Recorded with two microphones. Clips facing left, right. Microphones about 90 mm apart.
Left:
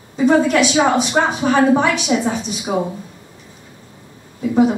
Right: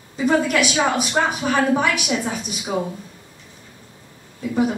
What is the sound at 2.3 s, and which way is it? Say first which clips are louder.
Speech: left 6 dB; 25° left (ahead or behind).